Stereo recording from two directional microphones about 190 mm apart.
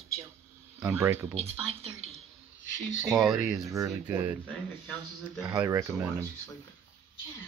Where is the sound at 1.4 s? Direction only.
35° right (ahead or behind).